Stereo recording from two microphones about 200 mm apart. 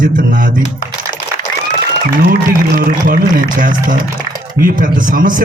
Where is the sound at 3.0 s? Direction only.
45° right (ahead or behind).